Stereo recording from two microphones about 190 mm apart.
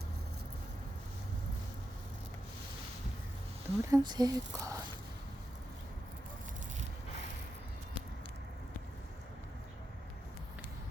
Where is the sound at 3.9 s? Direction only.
20° right (ahead or behind).